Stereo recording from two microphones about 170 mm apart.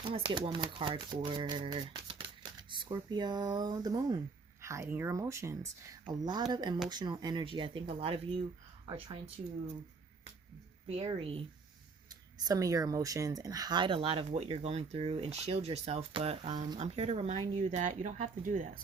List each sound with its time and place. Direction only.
0.0 s speech: 30° right (ahead or behind)
10.8 s speech: 30° right (ahead or behind)
12.0 s speech: 20° right (ahead or behind); by 18.8 s 55° right (ahead or behind)